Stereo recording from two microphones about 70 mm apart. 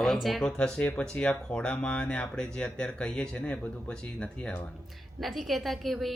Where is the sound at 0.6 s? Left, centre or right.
Centre.